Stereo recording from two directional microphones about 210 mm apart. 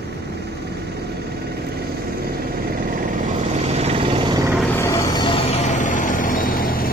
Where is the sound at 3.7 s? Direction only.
30° right (ahead or behind).